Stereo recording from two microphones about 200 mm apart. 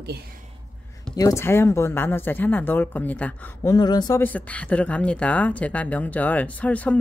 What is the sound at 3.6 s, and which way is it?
Speech, 20° left (ahead or behind).